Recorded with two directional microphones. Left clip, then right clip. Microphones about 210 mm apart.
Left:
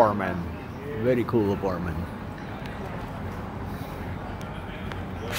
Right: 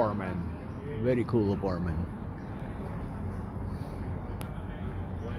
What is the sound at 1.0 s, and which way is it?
Speech, 5° left (ahead or behind).